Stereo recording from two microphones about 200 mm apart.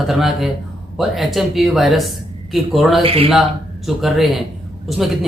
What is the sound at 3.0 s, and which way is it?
Speech, 30° right (ahead or behind).